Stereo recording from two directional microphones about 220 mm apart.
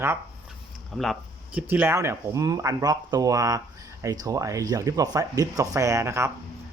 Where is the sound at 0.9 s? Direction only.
Centre (ahead or behind).